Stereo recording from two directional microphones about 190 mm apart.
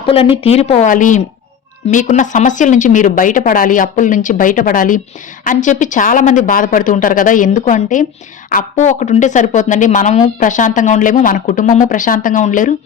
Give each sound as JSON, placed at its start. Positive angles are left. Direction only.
{"t": 0.1, "sound": "speech", "side_deg": 30}